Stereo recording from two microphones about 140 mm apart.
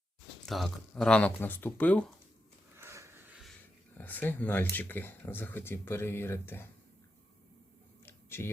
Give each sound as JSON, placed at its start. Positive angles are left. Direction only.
{"t": 0.4, "sound": "speech", "side_deg": 0}
{"t": 2.7, "sound": "sniff", "side_deg": -20}
{"t": 3.9, "sound": "speech", "side_deg": 10}
{"t": 8.0, "sound": "a sound", "side_deg": 15}